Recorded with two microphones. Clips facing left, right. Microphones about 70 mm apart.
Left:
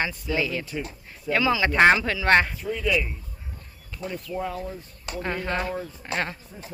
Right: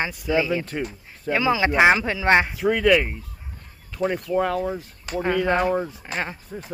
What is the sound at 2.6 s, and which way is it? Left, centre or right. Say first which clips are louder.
Speech: right 7 dB; right.